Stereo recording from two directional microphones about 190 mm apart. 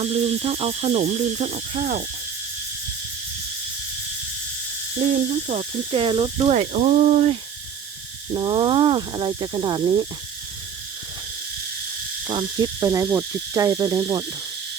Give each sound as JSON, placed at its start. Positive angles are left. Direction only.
{"t": 0.0, "sound": "speech", "side_deg": -30}
{"t": 5.1, "sound": "speech", "side_deg": -40}
{"t": 8.3, "sound": "speech", "side_deg": -25}
{"t": 12.3, "sound": "cricket", "side_deg": -25}